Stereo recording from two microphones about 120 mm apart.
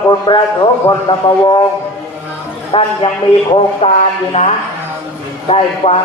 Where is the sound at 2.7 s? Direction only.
45° left (ahead or behind).